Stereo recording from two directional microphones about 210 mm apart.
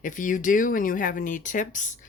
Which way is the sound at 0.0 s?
40° left (ahead or behind).